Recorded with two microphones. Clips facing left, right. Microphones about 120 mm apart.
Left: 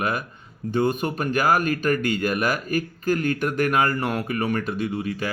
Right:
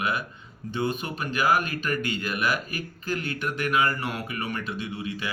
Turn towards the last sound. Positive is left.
turn(degrees=45)  # may be behind; listen again after turning